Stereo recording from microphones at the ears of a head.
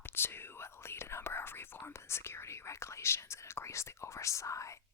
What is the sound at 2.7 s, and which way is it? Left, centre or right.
Whispering, left.